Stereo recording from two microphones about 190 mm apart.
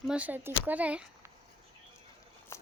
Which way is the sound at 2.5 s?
15° left (ahead or behind).